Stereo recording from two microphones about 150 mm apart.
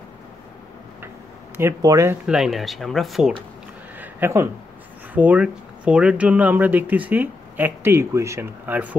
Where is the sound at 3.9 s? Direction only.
15° right (ahead or behind).